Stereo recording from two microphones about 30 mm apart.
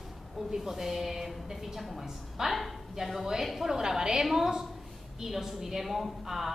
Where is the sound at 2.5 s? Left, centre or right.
Centre.